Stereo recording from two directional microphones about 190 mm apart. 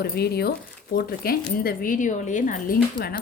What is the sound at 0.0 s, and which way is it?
Speech, 55° left (ahead or behind).